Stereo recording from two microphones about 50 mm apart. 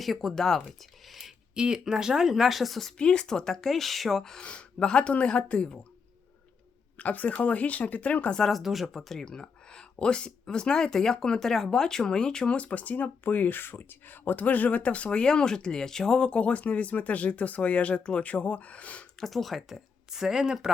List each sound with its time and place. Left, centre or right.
0.0 s speech: centre
1.5 s speech: centre
3.0 s speech: centre
4.4 s speech: left
6.9 s speech: left
8.4 s speech: centre
9.2 s speech: centre
19.2 s speech: centre